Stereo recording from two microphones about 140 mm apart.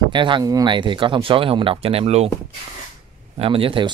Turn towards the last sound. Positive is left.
turn(degrees=-40)  # may be behind; listen again after turning